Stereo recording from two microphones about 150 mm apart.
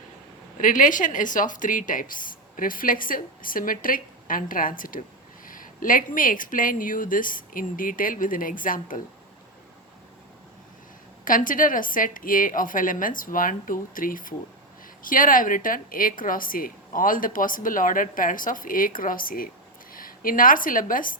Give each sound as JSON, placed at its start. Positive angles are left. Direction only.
{"t": 0.6, "sound": "a woman's voice", "side_deg": 60}
{"t": 11.3, "sound": "a woman's voice", "side_deg": 65}